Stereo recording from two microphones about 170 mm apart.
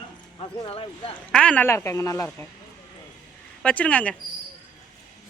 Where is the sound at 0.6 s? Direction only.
35° left (ahead or behind).